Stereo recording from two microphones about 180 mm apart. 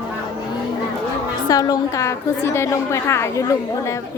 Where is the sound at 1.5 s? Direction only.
20° left (ahead or behind).